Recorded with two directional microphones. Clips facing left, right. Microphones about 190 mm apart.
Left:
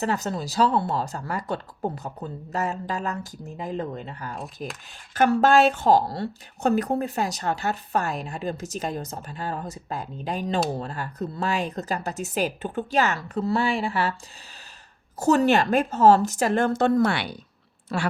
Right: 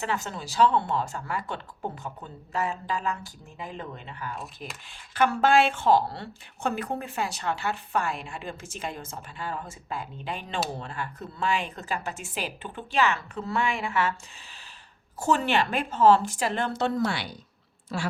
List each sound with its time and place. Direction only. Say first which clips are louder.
0.0 s a woman's voice: left 5 dB; 40° left (ahead or behind)
15.2 s a woman's voice: left 5 dB; 40° left (ahead or behind); by 18.1 s 65° left (ahead or behind)